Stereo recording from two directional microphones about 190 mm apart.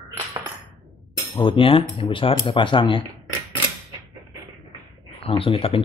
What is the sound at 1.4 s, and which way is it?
Speech, 25° left (ahead or behind).